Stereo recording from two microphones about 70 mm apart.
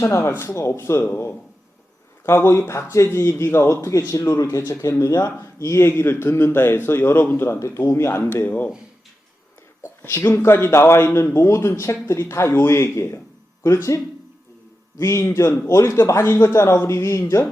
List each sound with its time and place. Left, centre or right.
0.0 s a man's voice: left
5.9 s a man's voice: left
7.6 s speech: left
8.3 s speech: left
10.0 s a man's voice: left